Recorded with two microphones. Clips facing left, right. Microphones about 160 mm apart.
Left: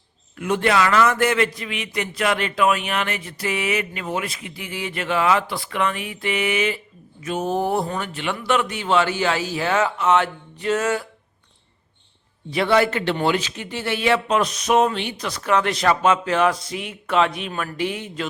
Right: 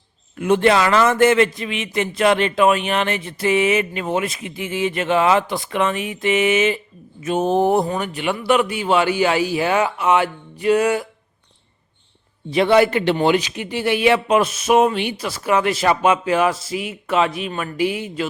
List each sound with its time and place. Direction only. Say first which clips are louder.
0.3 s a man's voice: right 4 dB; 25° right (ahead or behind)
12.5 s speech: right 4 dB; 20° right (ahead or behind)